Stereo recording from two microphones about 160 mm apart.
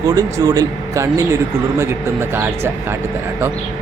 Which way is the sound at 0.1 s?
25° right (ahead or behind).